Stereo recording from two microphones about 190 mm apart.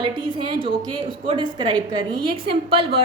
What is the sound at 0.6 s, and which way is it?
A woman's voice, 25° right (ahead or behind).